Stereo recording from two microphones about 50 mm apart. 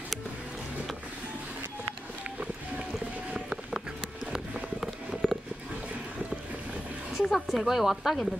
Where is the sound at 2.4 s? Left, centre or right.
Right.